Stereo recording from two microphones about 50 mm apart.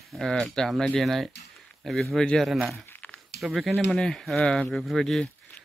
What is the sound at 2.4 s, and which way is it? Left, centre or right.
Speech, centre.